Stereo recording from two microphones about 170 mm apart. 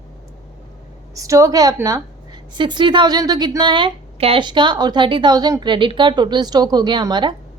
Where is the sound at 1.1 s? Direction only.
20° right (ahead or behind).